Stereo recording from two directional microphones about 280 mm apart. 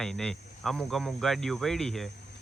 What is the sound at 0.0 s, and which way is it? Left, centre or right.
Speech, centre.